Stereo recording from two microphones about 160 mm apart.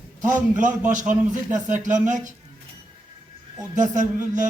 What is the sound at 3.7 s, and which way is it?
Speech, 50° right (ahead or behind).